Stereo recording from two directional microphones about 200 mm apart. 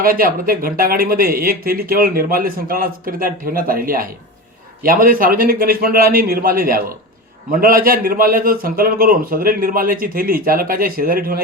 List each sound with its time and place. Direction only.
0.0 s speech: 45° right (ahead or behind)